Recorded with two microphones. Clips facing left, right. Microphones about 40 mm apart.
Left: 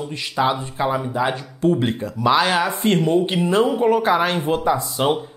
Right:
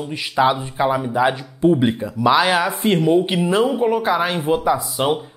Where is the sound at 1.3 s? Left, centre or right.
Right.